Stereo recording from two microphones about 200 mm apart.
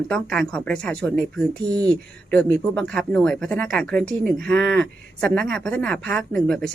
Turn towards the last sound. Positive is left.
turn(degrees=0)  # may be behind; listen again after turning